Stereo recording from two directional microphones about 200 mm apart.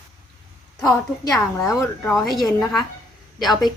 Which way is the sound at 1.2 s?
15° left (ahead or behind).